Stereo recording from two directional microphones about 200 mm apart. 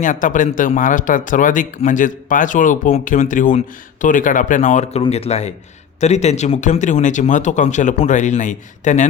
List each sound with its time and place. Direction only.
0.0 s speech: 40° left (ahead or behind)